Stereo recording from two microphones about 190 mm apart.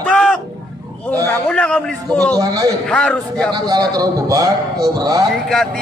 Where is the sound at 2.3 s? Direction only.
20° right (ahead or behind).